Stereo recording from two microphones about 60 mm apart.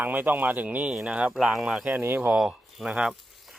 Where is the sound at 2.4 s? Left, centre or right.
Centre.